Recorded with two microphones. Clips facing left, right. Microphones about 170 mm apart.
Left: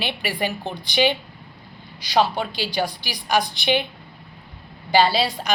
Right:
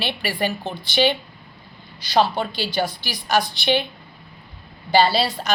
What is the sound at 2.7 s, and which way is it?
Speech, 15° left (ahead or behind).